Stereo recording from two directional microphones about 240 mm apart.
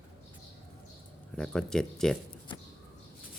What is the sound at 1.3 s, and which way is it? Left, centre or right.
Speech, centre.